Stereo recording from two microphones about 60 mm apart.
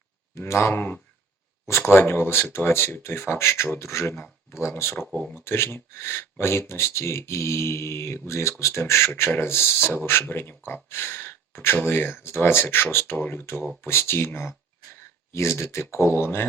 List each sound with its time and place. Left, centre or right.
0.3 s speech: left
4.1 s speech: left
15.3 s speech: left